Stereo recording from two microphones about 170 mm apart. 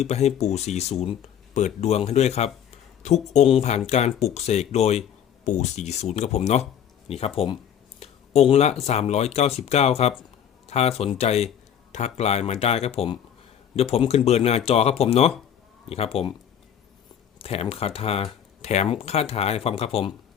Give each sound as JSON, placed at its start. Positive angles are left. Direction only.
{"t": 0.0, "sound": "speech", "side_deg": 40}
{"t": 17.4, "sound": "speech", "side_deg": 35}